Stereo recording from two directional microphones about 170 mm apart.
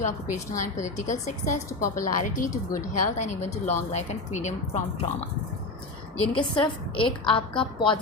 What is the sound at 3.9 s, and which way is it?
Speech, 45° left (ahead or behind).